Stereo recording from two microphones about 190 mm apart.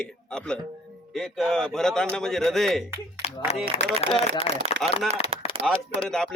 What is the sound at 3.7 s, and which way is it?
Speech, 35° left (ahead or behind).